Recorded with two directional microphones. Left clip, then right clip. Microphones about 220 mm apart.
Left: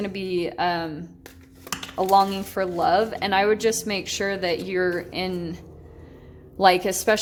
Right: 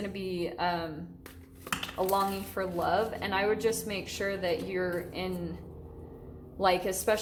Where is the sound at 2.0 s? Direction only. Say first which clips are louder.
Left 11 dB; 45° left (ahead or behind).